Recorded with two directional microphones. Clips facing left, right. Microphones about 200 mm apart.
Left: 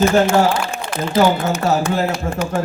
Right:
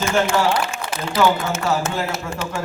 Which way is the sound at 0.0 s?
40° left (ahead or behind).